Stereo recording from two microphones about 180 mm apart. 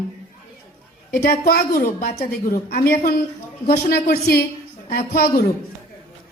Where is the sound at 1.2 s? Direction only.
55° left (ahead or behind).